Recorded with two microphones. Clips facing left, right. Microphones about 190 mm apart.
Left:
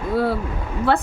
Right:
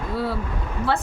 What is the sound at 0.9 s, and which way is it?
Speech, 60° left (ahead or behind).